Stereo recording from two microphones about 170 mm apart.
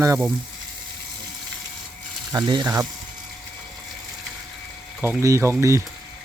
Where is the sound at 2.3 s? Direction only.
25° right (ahead or behind).